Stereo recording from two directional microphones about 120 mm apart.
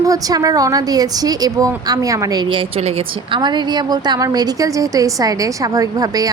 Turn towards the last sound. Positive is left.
turn(degrees=-30)  # may be behind; listen again after turning